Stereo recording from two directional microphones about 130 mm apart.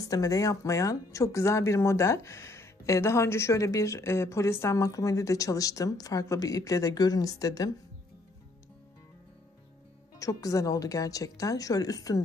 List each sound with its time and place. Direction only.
0.0 s speech: 30° left (ahead or behind)
10.1 s speech: 25° left (ahead or behind)